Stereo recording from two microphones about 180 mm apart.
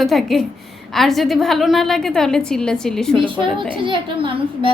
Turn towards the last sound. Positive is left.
turn(degrees=-30)  # may be behind; listen again after turning